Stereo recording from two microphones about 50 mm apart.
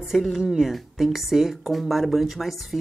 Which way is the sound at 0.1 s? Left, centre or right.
Centre.